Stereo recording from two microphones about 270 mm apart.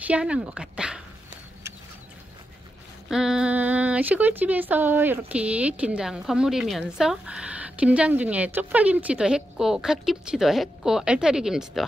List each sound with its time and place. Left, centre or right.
0.0 s speech: centre
3.1 s speech: centre